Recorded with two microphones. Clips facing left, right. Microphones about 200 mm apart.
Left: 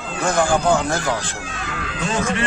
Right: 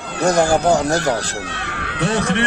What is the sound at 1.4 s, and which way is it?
Speech, 65° right (ahead or behind).